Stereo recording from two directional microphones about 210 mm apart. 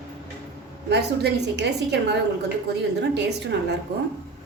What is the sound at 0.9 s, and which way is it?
A woman's voice, 55° right (ahead or behind).